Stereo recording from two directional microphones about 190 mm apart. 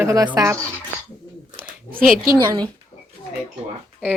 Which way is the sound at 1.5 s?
50° right (ahead or behind).